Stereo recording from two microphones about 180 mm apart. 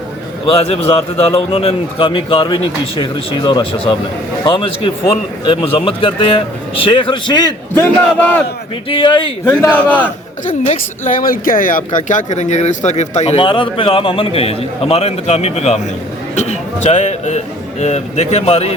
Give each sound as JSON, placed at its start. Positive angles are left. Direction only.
{"t": 0.4, "sound": "speech", "side_deg": 30}
{"t": 8.9, "sound": "speech", "side_deg": 30}
{"t": 9.7, "sound": "a man's voice", "side_deg": 10}
{"t": 10.4, "sound": "speech", "side_deg": 45}